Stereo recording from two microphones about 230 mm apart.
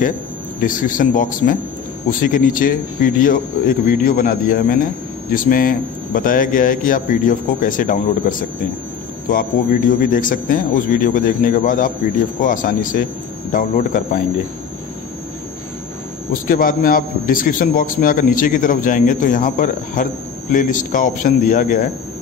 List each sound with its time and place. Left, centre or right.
0.6 s a man's voice: left
16.4 s a man's voice: left